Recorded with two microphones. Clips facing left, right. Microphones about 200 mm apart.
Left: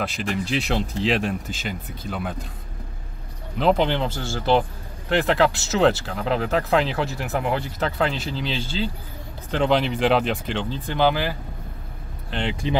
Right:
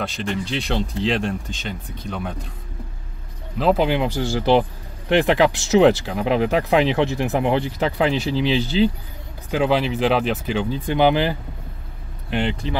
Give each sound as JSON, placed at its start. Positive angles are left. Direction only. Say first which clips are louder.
{"t": 0.0, "sound": "speech", "louder": "right 1 dB", "side_deg": 5}
{"t": 3.5, "sound": "speech", "louder": "right 2 dB", "side_deg": -5}